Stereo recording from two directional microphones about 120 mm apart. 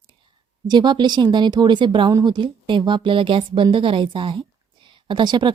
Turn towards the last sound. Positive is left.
turn(degrees=-40)  # may be behind; listen again after turning